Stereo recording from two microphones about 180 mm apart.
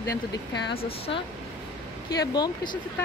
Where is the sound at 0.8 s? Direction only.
30° left (ahead or behind).